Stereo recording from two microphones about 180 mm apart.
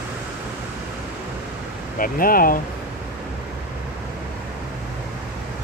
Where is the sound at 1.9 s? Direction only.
50° left (ahead or behind).